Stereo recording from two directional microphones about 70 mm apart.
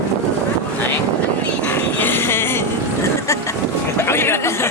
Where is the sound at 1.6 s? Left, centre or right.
Left.